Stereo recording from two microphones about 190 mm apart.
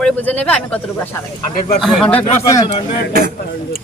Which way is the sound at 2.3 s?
15° left (ahead or behind).